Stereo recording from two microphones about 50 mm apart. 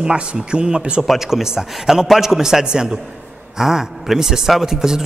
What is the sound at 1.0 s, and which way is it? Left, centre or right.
A man's voice, centre.